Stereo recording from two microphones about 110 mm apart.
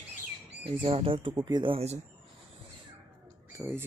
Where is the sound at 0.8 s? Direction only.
55° right (ahead or behind).